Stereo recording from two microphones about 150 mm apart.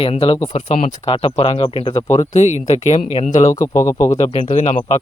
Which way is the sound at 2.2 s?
50° left (ahead or behind).